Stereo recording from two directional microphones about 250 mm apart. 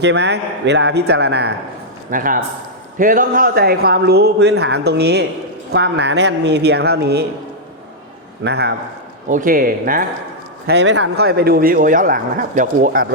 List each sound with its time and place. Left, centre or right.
0.0 s a man's voice: right
8.4 s speech: right
10.7 s speech: right